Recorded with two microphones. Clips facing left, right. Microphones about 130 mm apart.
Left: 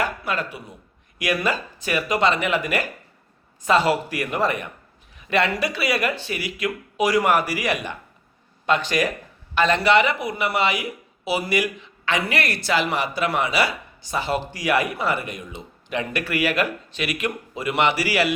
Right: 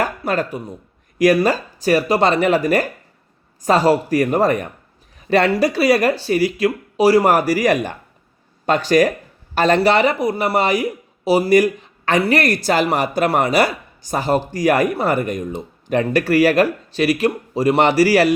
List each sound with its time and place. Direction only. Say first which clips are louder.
0.0 s speech: right 5 dB; 45° right (ahead or behind)